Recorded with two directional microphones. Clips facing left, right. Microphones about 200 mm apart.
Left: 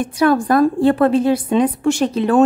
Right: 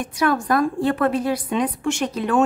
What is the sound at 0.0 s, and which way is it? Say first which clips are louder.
A woman's voice: left 6 dB; 30° left (ahead or behind).